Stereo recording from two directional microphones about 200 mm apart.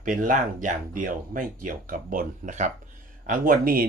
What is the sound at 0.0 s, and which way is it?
Speech, 40° right (ahead or behind).